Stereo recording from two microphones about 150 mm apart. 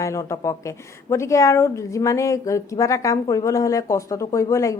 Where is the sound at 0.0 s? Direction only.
20° left (ahead or behind).